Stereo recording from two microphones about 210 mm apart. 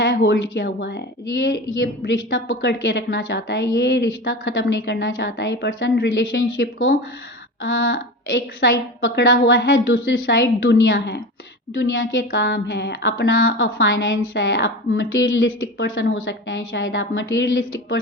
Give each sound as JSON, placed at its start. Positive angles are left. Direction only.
{"t": 0.0, "sound": "a woman's voice", "side_deg": 60}